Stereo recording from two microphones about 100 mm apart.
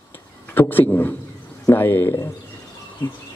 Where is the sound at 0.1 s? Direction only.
20° left (ahead or behind).